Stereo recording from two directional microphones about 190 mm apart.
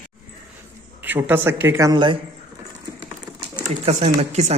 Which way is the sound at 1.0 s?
10° right (ahead or behind).